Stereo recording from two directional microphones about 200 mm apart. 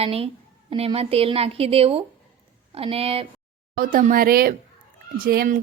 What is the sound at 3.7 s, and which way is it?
Speech, 45° right (ahead or behind).